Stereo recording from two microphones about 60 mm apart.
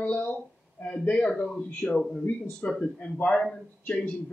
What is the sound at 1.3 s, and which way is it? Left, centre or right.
Speech, centre.